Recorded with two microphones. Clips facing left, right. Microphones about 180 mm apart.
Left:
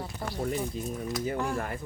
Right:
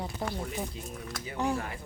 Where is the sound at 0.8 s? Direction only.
45° left (ahead or behind).